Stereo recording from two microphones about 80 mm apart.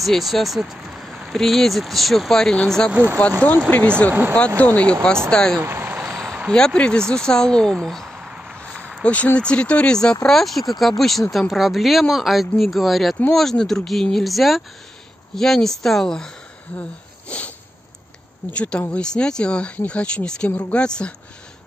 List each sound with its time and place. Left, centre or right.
0.0 s speech: centre
2.9 s speech: right
3.2 s speech: centre
4.6 s speech: centre
5.6 s vehicle: right
6.5 s speech: centre
8.3 s a sound: centre
8.5 s a sound: centre
9.0 s speech: centre
17.3 s a sound: centre
18.5 s speech: centre